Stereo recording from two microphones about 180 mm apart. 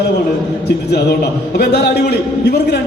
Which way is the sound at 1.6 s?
65° left (ahead or behind).